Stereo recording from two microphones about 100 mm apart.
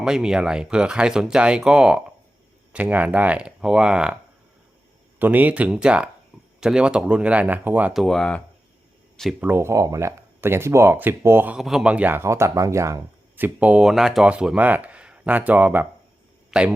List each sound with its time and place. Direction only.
0.0 s speech: 5° right (ahead or behind)
5.2 s speech: 15° right (ahead or behind)
7.9 s speech: 5° left (ahead or behind)
9.4 s speech: 20° right (ahead or behind)
11.5 s speech: 5° right (ahead or behind); by 13.0 s 30° right (ahead or behind)
13.3 s speech: 15° right (ahead or behind)